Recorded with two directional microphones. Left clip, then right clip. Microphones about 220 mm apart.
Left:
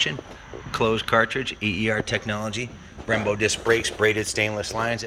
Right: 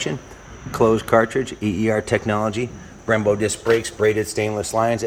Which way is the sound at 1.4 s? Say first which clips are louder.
Right 1 dB; 35° right (ahead or behind).